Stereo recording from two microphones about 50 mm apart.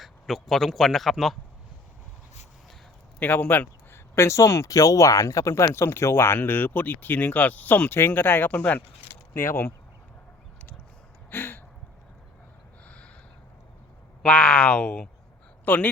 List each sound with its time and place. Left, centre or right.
0.0 s speech: centre
3.2 s speech: left
3.9 s speech: left
9.3 s speech: left
11.3 s a sound: left
14.2 s speech: centre
15.6 s speech: left